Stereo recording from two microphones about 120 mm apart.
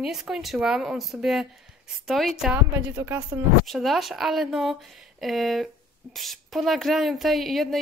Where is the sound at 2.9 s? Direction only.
25° right (ahead or behind).